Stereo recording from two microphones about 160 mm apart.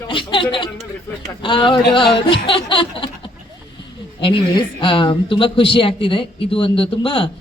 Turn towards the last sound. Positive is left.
turn(degrees=35)  # may be behind; listen again after turning